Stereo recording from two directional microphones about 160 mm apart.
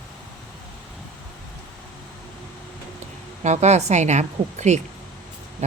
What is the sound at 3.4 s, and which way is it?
Speech, 45° right (ahead or behind).